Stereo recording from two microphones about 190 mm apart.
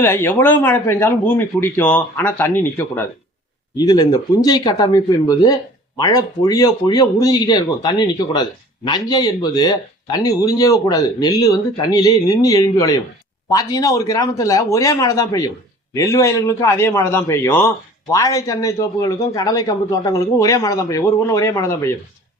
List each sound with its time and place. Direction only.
0.0 s a man's voice: 10° left (ahead or behind)